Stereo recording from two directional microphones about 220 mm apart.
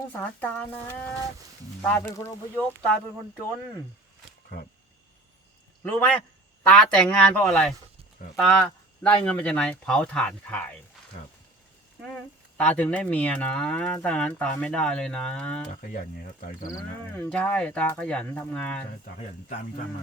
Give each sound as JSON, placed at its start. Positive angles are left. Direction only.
{"t": 0.1, "sound": "speech", "side_deg": 10}
{"t": 6.6, "sound": "cattle", "side_deg": 5}
{"t": 8.4, "sound": "speech", "side_deg": 5}
{"t": 9.2, "sound": "cattle", "side_deg": 5}
{"t": 12.0, "sound": "cattle", "side_deg": 5}
{"t": 15.7, "sound": "speech", "side_deg": 40}
{"t": 17.2, "sound": "cattle", "side_deg": 5}